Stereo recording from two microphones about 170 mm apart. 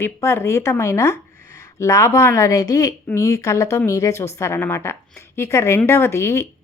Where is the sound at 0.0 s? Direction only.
15° left (ahead or behind).